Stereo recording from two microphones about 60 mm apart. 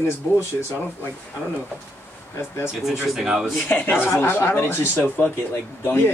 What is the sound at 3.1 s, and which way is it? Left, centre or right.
Speech, centre.